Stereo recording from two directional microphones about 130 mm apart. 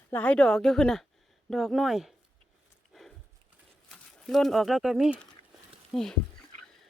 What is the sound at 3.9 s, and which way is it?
Speech, 5° left (ahead or behind).